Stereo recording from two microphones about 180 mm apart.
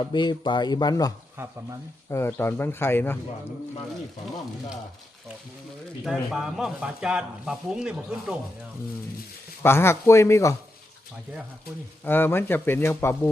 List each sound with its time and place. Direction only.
0.0 s speech: 25° left (ahead or behind)
1.4 s speech: 10° right (ahead or behind)
2.0 s speech: 15° left (ahead or behind)
6.1 s speech: centre (ahead or behind)
9.6 s speech: 15° left (ahead or behind)
12.0 s speech: 10° left (ahead or behind)